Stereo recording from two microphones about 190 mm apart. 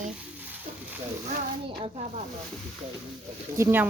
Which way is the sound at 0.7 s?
45° right (ahead or behind).